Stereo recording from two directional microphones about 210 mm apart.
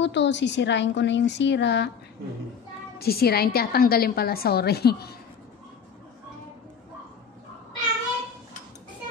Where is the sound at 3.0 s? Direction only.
45° left (ahead or behind).